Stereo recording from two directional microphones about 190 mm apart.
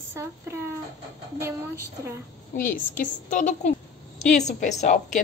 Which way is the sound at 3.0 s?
40° left (ahead or behind).